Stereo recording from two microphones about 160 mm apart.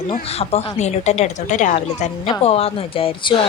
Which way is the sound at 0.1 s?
40° left (ahead or behind).